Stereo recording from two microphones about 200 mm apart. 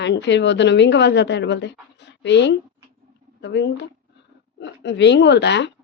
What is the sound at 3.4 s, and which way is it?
Speech, 60° left (ahead or behind).